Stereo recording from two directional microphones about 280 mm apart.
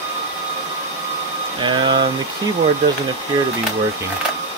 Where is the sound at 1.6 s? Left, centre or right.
Centre.